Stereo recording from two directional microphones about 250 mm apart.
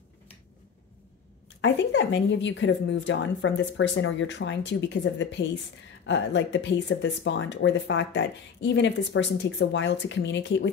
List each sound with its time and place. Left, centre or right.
1.6 s speech: left